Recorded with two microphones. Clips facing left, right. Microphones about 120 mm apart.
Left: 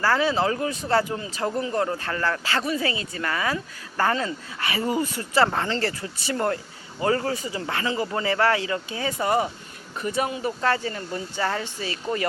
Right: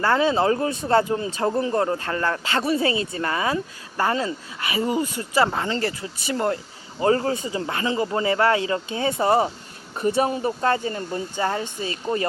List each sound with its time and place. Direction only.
0.0 s speech: 25° right (ahead or behind)
10.6 s speech: 25° right (ahead or behind)